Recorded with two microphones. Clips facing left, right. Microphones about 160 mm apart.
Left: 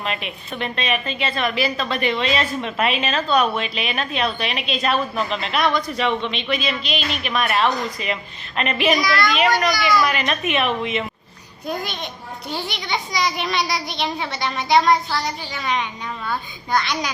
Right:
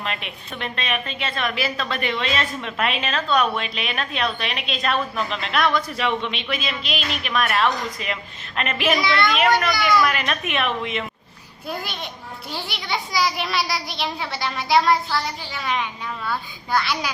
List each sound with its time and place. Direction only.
0.0 s a woman's voice: 5° left (ahead or behind)
9.0 s a woman's voice: 25° right (ahead or behind)
9.6 s a woman's voice: centre (ahead or behind)